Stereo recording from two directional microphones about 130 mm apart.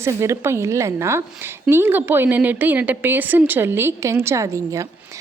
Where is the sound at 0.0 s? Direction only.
20° right (ahead or behind).